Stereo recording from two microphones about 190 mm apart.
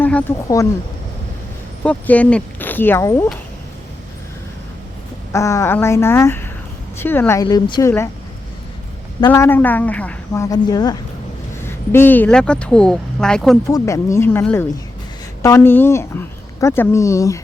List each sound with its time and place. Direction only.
0.0 s a sound: 10° left (ahead or behind)
0.4 s a woman's voice: 15° left (ahead or behind)
1.8 s a woman's voice: 5° left (ahead or behind)
5.3 s a woman's voice: 15° left (ahead or behind)
9.2 s a woman's voice: 15° left (ahead or behind)
13.7 s a woman's voice: 15° left (ahead or behind)